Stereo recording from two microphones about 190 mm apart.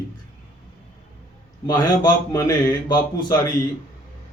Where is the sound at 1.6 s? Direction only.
20° left (ahead or behind).